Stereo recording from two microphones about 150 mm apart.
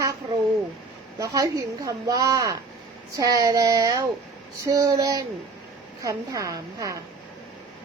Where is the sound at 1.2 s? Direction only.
20° right (ahead or behind).